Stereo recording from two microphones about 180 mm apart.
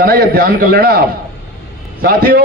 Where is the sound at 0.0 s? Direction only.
55° right (ahead or behind).